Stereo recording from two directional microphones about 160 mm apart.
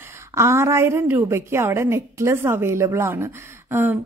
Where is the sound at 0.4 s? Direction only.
15° right (ahead or behind).